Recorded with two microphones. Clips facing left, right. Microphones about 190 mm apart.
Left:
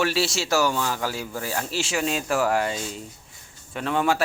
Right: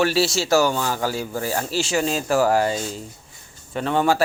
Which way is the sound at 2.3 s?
30° right (ahead or behind).